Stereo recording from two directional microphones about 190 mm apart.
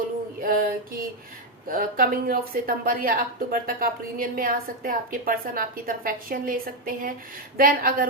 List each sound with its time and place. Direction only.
0.4 s female singing: 50° right (ahead or behind)
1.6 s speech: 45° right (ahead or behind)